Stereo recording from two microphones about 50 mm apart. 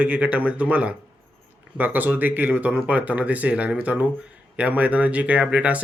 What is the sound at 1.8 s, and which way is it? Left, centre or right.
Speech, right.